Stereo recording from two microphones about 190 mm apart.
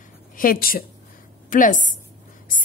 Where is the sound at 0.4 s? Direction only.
50° left (ahead or behind).